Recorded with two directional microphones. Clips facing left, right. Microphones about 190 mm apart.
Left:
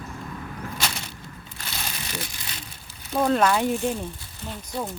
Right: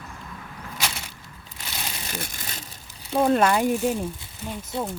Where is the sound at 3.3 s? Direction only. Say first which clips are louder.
Right 1 dB; 5° right (ahead or behind).